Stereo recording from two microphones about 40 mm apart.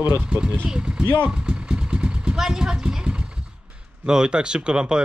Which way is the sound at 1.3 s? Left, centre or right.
Right.